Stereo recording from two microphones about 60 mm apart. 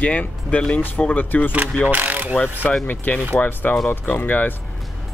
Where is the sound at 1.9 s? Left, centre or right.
Right.